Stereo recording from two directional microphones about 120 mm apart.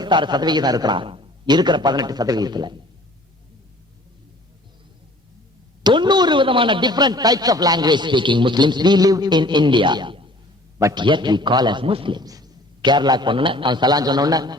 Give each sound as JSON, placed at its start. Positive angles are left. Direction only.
{"t": 0.0, "sound": "speech", "side_deg": -40}
{"t": 5.8, "sound": "speech", "side_deg": -40}
{"t": 12.2, "sound": "a man's voice", "side_deg": -30}